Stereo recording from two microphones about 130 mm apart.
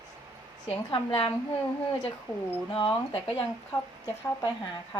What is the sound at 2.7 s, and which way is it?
Speech, 40° left (ahead or behind).